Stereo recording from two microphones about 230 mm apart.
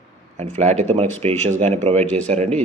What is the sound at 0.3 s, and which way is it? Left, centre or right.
A man's voice, right.